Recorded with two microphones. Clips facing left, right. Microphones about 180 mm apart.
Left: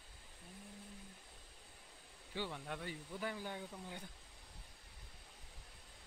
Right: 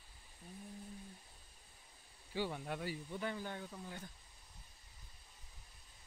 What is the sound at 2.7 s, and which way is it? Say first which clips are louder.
Speech: right 4 dB; 5° right (ahead or behind).